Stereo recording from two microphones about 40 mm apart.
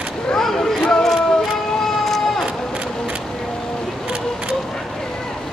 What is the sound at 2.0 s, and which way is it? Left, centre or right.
Run, centre.